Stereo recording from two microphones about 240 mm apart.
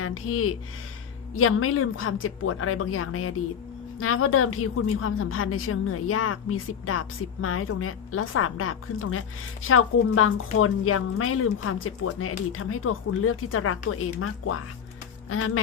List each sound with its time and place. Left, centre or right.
0.0 s a woman's voice: left